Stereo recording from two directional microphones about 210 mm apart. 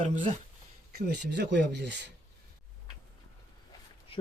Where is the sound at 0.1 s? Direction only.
35° right (ahead or behind).